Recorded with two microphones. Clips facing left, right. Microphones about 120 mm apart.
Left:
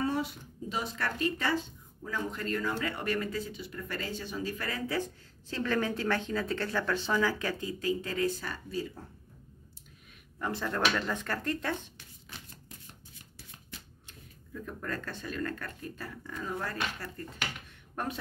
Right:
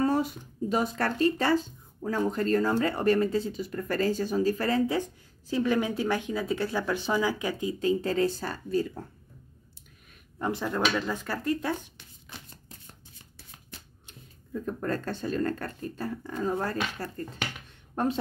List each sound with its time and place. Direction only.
0.0 s speech: 45° right (ahead or behind)
3.6 s speech: 45° right (ahead or behind)
4.9 s speech: 15° right (ahead or behind)
7.8 s speech: 30° right (ahead or behind)
10.4 s speech: 15° right (ahead or behind)
14.5 s speech: 35° right (ahead or behind)